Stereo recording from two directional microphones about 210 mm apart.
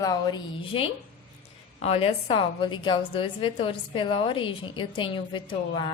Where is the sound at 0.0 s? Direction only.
20° left (ahead or behind).